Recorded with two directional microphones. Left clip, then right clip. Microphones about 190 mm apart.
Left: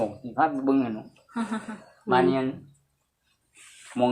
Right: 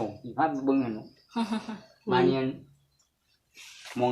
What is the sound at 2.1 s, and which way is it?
Speech, 10° left (ahead or behind).